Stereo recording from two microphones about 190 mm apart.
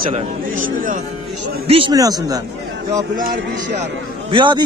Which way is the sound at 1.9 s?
20° right (ahead or behind).